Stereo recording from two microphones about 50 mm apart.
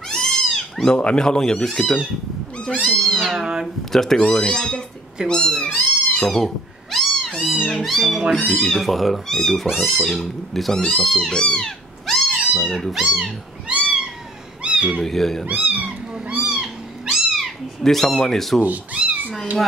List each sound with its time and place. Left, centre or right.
0.1 s cat: centre
0.9 s speech: centre
2.8 s cat: centre
3.3 s speech: centre
3.6 s speech: centre
6.2 s cat: centre
7.6 s speech: centre
14.6 s cat: right
15.0 s speech: centre
15.4 s cat: right
16.6 s cat: centre
17.8 s speech: centre
18.6 s speech: right